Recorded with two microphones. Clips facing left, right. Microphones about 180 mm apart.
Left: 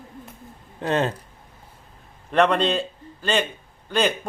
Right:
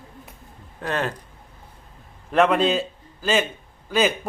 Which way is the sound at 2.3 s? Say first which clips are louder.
Right 1 dB; 5° right (ahead or behind).